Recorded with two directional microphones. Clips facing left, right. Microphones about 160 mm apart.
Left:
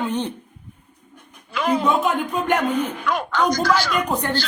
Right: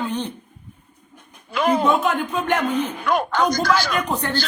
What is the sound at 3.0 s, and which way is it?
Speech, 50° right (ahead or behind).